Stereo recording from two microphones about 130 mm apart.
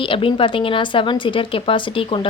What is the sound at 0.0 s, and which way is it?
A woman's voice, 40° left (ahead or behind).